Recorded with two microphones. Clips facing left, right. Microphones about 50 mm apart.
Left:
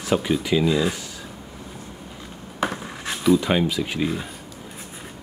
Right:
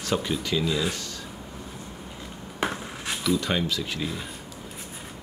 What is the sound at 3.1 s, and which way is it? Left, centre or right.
Speech, centre.